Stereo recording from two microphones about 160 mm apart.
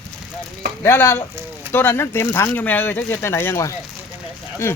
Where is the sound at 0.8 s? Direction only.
15° left (ahead or behind).